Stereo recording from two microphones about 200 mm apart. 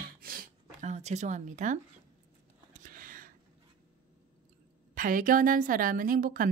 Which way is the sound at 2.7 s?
45° right (ahead or behind).